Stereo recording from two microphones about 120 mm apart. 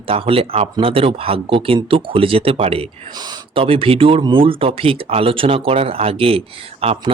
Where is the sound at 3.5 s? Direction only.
50° right (ahead or behind).